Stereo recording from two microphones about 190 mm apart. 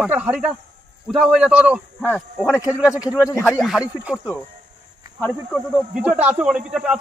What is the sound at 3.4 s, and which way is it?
Speech, centre (ahead or behind).